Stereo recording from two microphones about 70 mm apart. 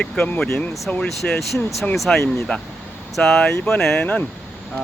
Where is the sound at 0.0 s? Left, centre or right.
Centre.